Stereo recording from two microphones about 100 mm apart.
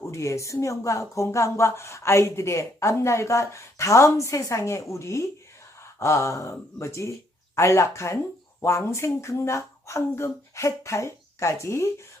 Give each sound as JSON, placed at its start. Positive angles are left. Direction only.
{"t": 0.0, "sound": "speech", "side_deg": 30}